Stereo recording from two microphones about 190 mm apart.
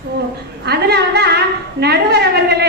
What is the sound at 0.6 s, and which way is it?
A woman's voice, 60° right (ahead or behind).